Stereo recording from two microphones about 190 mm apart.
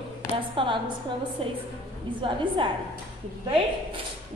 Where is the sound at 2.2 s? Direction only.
25° right (ahead or behind).